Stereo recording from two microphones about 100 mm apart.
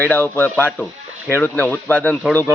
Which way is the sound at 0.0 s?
20° left (ahead or behind).